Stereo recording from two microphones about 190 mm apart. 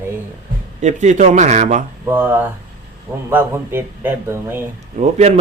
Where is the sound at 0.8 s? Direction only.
40° right (ahead or behind).